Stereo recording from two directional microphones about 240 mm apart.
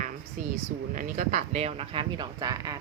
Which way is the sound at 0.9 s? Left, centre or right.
Right.